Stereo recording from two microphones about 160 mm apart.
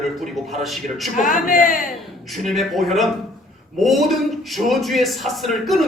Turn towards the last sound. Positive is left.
turn(degrees=0)  # may be behind; listen again after turning